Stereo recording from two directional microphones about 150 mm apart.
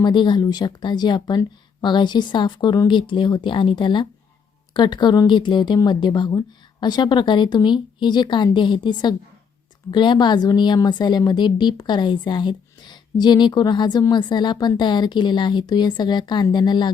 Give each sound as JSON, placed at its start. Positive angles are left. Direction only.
{"t": 0.0, "sound": "a woman's voice", "side_deg": 30}